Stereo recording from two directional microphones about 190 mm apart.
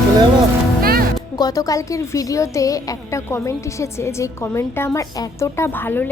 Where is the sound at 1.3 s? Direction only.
20° left (ahead or behind).